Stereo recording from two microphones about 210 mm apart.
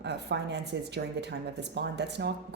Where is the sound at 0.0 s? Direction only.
55° right (ahead or behind).